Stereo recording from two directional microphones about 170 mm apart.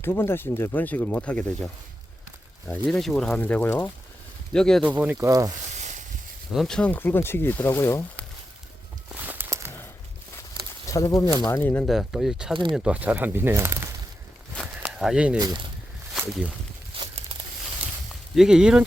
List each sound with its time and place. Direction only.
0.0 s speech: 15° left (ahead or behind)
2.7 s speech: centre (ahead or behind)
4.9 s speech: 10° right (ahead or behind)
5.7 s stir: 45° right (ahead or behind)
6.5 s speech: centre (ahead or behind)
9.1 s a sound: 10° right (ahead or behind)
10.8 s speech: 20° left (ahead or behind)
11.9 s speech: centre (ahead or behind)
14.8 s a sound: 5° right (ahead or behind)
15.4 s speech: 25° right (ahead or behind)
16.9 s crumpling: 30° right (ahead or behind)
18.3 s speech: 5° right (ahead or behind)